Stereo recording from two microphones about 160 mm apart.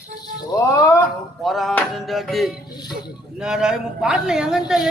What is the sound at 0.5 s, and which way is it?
Music, 20° left (ahead or behind).